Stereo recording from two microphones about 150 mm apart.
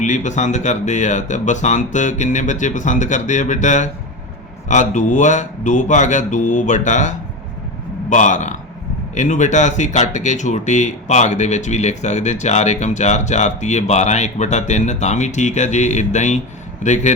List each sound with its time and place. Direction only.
0.0 s speech: 55° left (ahead or behind)